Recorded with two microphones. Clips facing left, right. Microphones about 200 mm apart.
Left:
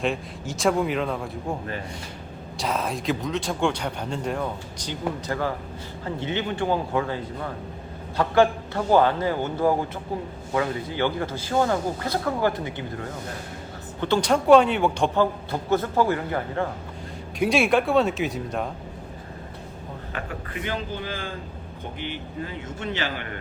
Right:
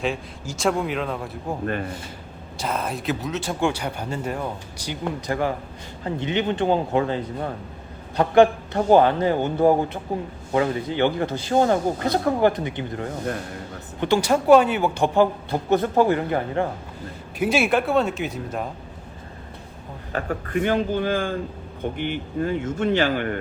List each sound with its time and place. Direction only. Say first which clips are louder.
0.0 s speech: even; centre (ahead or behind)
1.6 s a man's voice: right 6 dB; 60° right (ahead or behind)
2.6 s speech: even; centre (ahead or behind)
4.9 s a man's voice: right 2 dB; 15° right (ahead or behind)
17.4 s speech: even; centre (ahead or behind)
20.1 s speech: right 10 dB; 45° right (ahead or behind)